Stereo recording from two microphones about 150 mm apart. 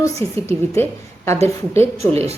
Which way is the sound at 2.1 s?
45° right (ahead or behind).